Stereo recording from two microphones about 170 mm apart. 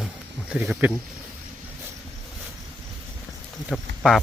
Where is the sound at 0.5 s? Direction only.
5° right (ahead or behind).